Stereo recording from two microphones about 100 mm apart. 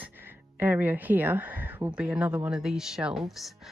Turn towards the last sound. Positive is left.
turn(degrees=0)  # may be behind; listen again after turning